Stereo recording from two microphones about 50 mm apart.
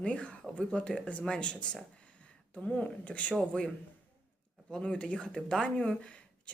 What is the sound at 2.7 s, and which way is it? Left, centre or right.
Speech, left.